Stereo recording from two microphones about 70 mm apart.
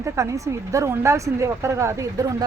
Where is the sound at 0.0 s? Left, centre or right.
Right.